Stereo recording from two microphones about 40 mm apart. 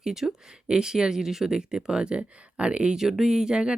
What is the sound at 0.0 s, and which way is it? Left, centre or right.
Speech, centre.